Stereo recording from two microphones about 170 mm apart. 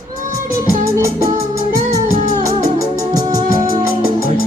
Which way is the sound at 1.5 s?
20° right (ahead or behind).